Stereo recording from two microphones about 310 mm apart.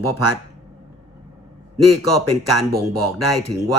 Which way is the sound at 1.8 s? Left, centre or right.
Right.